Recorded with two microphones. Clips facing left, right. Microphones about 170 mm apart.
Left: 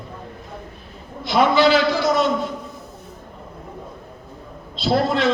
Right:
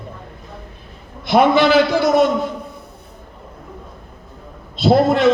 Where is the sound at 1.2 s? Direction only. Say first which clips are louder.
Right 3 dB; 55° right (ahead or behind).